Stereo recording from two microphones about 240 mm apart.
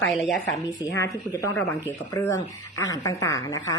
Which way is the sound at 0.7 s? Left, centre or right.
Centre.